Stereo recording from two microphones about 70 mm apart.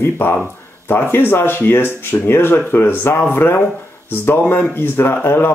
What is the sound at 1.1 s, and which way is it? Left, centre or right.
Speech, left.